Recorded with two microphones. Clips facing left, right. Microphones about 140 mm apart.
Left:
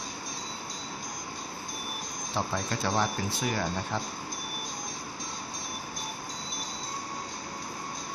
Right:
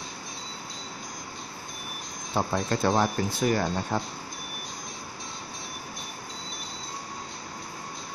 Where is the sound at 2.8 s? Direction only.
55° right (ahead or behind).